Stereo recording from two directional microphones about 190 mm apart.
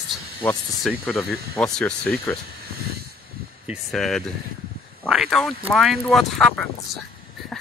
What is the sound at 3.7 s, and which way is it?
Speech, centre (ahead or behind).